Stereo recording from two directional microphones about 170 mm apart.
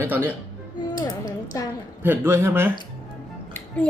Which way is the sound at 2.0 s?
10° right (ahead or behind).